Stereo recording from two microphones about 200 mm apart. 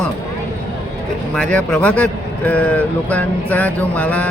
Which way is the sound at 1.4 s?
5° left (ahead or behind).